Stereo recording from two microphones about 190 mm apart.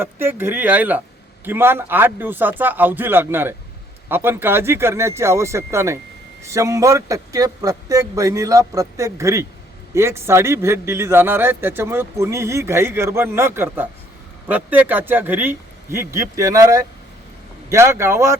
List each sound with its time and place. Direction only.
0.0 s a man's voice: 10° right (ahead or behind)